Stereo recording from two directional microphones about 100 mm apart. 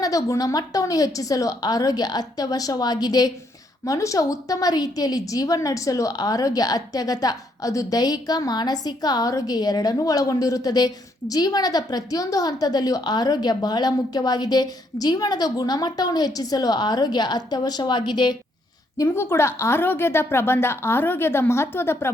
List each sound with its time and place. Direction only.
0.0 s a woman's voice: 35° left (ahead or behind)
18.9 s a woman's voice: 25° left (ahead or behind)